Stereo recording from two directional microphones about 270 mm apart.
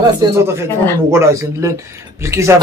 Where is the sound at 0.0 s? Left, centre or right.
Centre.